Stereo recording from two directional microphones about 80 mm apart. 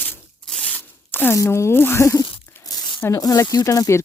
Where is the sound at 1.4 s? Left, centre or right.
Left.